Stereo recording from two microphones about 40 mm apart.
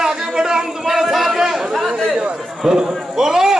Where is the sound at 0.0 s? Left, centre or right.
Centre.